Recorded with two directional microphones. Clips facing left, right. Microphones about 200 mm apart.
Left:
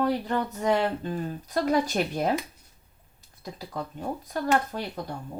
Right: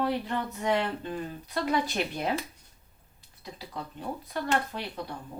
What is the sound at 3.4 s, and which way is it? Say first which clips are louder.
Speech: left 4 dB; 45° left (ahead or behind).